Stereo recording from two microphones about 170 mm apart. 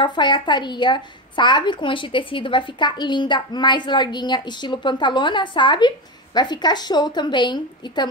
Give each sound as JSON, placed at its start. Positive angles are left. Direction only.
{"t": 0.0, "sound": "speech", "side_deg": 25}